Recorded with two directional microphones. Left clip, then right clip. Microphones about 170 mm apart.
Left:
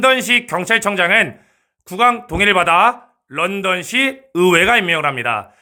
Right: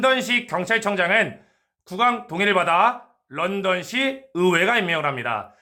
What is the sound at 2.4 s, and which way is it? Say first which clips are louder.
A man's voice: left 6 dB; 35° left (ahead or behind).